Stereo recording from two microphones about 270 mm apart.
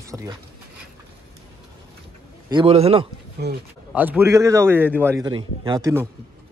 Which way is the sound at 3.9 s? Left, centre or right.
Centre.